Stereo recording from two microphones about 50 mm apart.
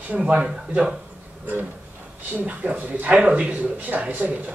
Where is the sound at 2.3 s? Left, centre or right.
Right.